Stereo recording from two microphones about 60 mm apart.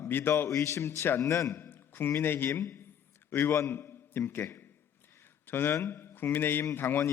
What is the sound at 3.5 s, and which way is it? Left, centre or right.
Speech, left.